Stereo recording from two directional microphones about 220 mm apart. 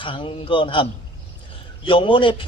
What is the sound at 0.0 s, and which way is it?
Speech, 20° left (ahead or behind).